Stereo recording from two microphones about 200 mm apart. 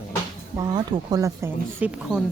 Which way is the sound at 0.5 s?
20° right (ahead or behind).